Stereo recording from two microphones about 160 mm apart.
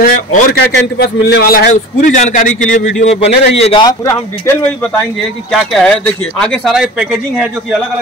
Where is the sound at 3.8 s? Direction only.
20° left (ahead or behind).